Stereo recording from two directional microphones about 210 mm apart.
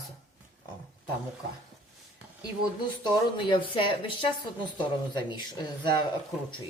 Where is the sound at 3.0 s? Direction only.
25° left (ahead or behind).